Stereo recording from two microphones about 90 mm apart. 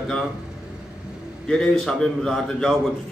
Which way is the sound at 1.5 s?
5° left (ahead or behind).